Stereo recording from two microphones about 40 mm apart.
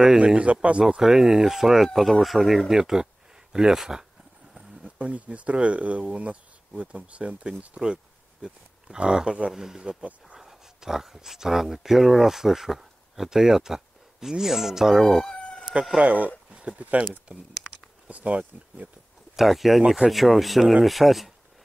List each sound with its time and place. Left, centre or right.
0.2 s speech: right
0.8 s speech: centre
2.7 s speech: centre
4.8 s speech: right
9.5 s speech: centre
15.0 s speech: centre
16.0 s speech: right
16.5 s a sound: right
17.6 s a sound: centre
18.0 s speech: right
19.3 s speech: centre